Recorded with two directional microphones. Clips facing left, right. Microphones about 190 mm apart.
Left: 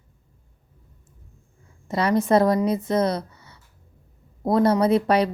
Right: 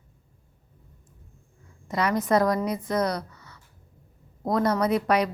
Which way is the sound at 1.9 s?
30° left (ahead or behind).